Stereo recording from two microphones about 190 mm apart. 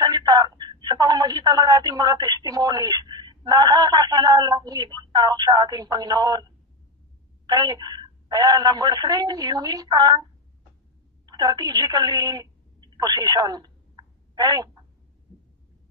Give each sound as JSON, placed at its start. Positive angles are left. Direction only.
{"t": 0.0, "sound": "speech", "side_deg": -20}
{"t": 7.4, "sound": "a woman's voice", "side_deg": -20}
{"t": 11.2, "sound": "a woman's voice", "side_deg": -20}